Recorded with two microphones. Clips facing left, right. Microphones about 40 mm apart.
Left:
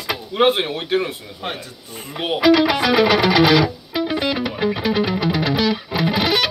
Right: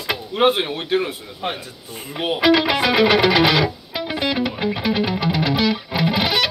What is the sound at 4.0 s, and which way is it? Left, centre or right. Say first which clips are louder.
Music: left 2 dB; centre.